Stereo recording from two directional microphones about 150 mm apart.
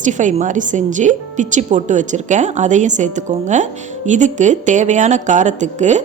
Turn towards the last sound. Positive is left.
turn(degrees=-50)  # may be behind; listen again after turning